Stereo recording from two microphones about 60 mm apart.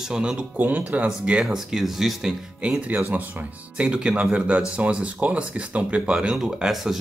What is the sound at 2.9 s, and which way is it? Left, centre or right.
Speech, right.